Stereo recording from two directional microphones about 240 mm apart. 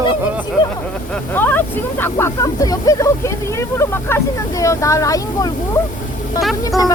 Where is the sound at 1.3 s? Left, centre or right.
Centre.